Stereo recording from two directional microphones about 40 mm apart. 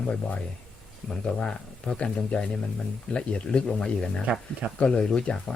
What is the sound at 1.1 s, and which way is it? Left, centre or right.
Speech, left.